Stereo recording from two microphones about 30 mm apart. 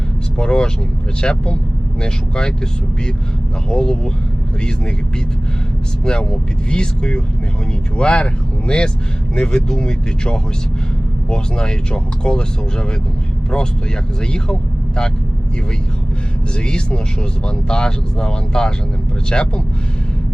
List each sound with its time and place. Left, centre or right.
0.3 s speech: left
3.7 s speech: left
6.1 s speech: left
14.2 s speech: left
16.6 s speech: left